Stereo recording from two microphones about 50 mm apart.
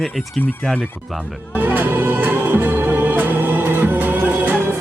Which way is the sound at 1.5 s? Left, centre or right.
Right.